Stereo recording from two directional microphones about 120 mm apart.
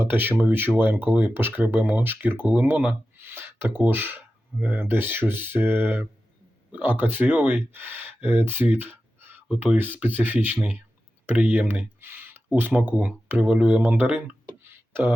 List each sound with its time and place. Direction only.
0.0 s speech: 20° right (ahead or behind)